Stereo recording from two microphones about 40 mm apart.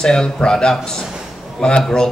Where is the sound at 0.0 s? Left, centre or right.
Centre.